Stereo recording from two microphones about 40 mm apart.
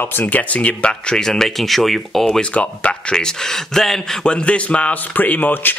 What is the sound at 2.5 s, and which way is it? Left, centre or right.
Speech, left.